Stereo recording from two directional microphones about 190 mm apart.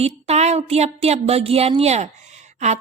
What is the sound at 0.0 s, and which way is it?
Speech, 35° right (ahead or behind).